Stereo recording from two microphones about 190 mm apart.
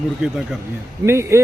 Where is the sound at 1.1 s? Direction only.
15° right (ahead or behind).